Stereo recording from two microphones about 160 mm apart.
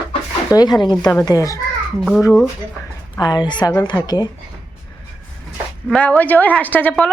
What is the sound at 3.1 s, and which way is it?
Speech, 25° left (ahead or behind).